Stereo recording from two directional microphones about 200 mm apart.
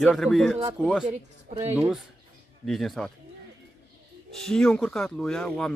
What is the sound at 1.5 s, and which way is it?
Speech, 30° right (ahead or behind).